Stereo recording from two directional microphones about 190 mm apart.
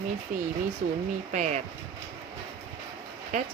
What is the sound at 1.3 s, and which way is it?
Speech, 40° right (ahead or behind).